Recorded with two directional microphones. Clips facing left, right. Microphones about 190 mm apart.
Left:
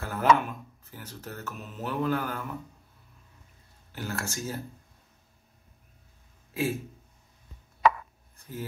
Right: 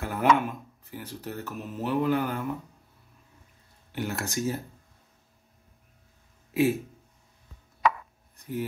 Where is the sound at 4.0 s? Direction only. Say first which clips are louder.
Right 5 dB; 15° right (ahead or behind).